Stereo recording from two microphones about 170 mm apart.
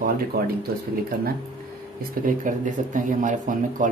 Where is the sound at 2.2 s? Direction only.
60° right (ahead or behind).